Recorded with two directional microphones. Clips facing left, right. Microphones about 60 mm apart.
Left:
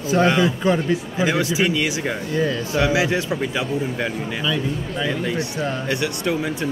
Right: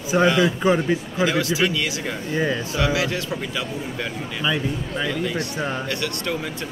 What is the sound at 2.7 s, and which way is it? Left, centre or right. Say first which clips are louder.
Speech: left 5 dB; left.